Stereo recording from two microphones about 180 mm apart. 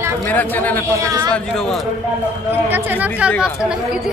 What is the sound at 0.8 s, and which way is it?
Speech, 15° right (ahead or behind).